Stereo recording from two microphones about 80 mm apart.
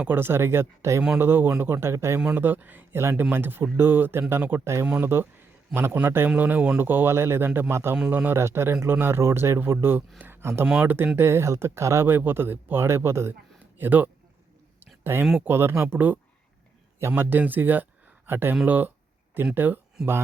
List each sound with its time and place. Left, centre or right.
0.1 s speech: right
6.3 s speech: centre
8.4 s speech: right
15.1 s speech: right